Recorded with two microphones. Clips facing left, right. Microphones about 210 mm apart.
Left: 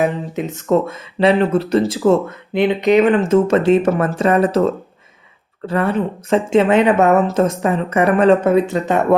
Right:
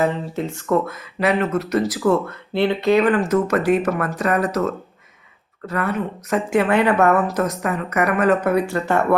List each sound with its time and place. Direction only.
0.0 s speech: 15° left (ahead or behind)